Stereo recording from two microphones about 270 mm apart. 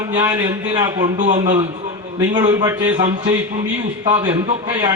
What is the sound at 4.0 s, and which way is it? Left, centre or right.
Speech, centre.